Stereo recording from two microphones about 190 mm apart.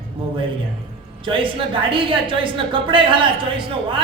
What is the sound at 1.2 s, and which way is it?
A woman's voice, 25° right (ahead or behind).